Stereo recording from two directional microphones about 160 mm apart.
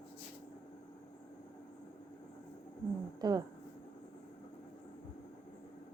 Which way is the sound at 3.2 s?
25° right (ahead or behind).